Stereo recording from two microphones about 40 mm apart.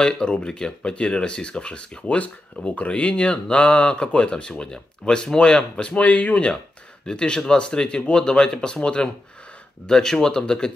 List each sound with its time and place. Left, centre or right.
0.0 s speech: left
7.1 s speech: centre
9.8 s speech: centre